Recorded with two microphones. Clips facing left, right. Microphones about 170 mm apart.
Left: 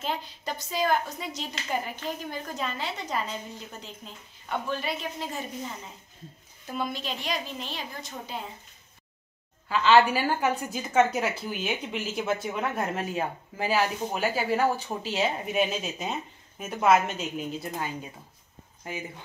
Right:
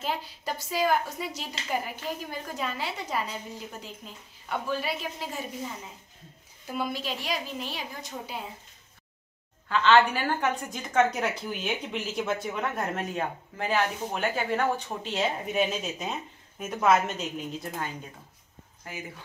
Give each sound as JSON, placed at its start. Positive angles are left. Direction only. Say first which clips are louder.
{"t": 0.0, "sound": "a woman's voice", "louder": "even", "side_deg": -5}
{"t": 6.7, "sound": "a woman's voice", "louder": "right 1 dB", "side_deg": -5}
{"t": 9.7, "sound": "a woman's voice", "louder": "left 1 dB", "side_deg": 10}
{"t": 18.9, "sound": "speech", "louder": "left 4 dB", "side_deg": 20}